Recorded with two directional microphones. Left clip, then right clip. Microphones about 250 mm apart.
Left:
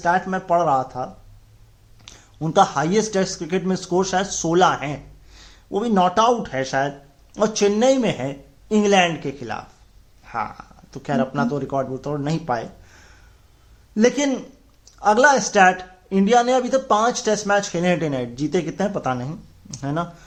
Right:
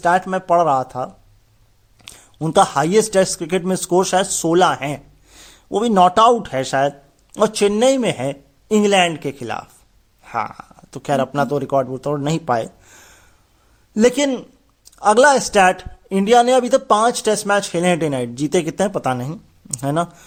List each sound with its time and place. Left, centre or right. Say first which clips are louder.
0.0 s speech: right 4 dB; right